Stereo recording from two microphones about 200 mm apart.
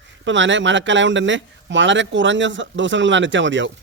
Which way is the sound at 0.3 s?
65° right (ahead or behind).